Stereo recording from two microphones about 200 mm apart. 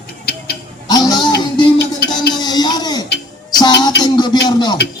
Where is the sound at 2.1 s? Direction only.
20° left (ahead or behind).